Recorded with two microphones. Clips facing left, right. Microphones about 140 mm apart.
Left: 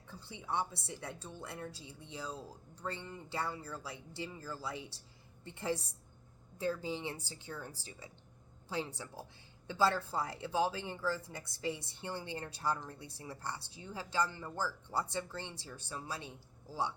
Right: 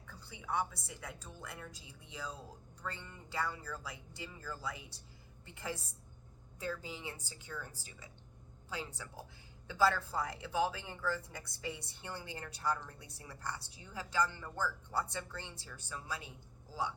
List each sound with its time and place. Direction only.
0.1 s a woman's voice: 25° left (ahead or behind)